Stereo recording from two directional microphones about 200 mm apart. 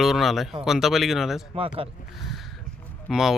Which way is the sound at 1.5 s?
25° right (ahead or behind).